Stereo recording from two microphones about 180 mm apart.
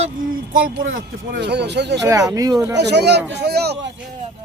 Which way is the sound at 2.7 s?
70° right (ahead or behind).